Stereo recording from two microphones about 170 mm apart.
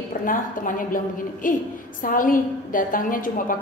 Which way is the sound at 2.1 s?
55° left (ahead or behind).